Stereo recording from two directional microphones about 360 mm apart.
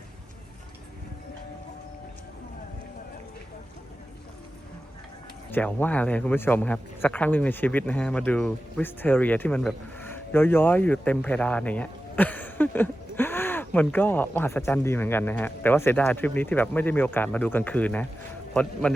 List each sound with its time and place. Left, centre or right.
5.5 s speech: centre